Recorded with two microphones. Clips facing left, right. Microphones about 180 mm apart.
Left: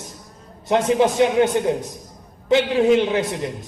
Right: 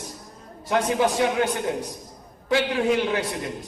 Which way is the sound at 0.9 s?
20° left (ahead or behind).